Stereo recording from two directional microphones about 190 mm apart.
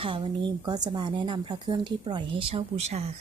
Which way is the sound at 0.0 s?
25° right (ahead or behind).